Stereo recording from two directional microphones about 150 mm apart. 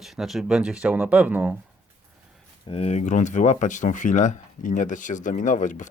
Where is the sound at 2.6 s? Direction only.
45° left (ahead or behind).